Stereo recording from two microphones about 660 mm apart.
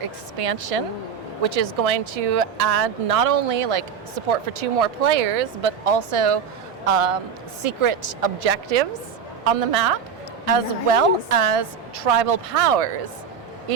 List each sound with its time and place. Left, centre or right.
0.0 s a woman's voice: right